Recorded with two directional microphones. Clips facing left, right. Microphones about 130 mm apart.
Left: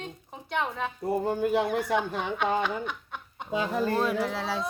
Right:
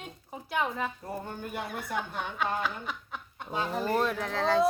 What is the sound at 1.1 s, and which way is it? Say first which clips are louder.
Speech: left 11 dB; 90° left.